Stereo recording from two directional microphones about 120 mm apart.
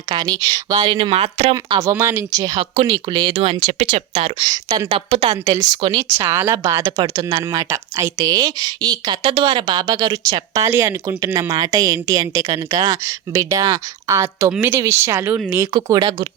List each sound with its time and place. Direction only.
0.1 s speech: 35° right (ahead or behind)
1.1 s speech: 55° right (ahead or behind)
1.5 s a woman's voice: 25° right (ahead or behind)
2.6 s speech: 45° right (ahead or behind)
3.3 s speech: 55° right (ahead or behind)
3.8 s speech: 50° right (ahead or behind)
4.9 s speech: 50° right (ahead or behind)
5.3 s speech: 30° right (ahead or behind)
6.1 s a woman's voice: 20° right (ahead or behind)
15.7 s speech: 35° right (ahead or behind)